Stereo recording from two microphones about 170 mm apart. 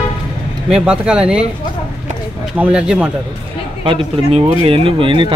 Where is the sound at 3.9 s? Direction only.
35° right (ahead or behind).